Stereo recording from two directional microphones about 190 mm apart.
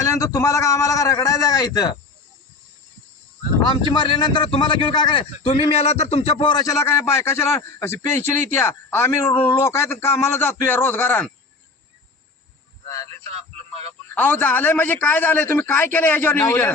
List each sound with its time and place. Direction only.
0.0 s a man's voice: 15° left (ahead or behind)
3.7 s a man's voice: 25° left (ahead or behind)
12.9 s a sound: 15° left (ahead or behind)
14.2 s a man's voice: 10° left (ahead or behind)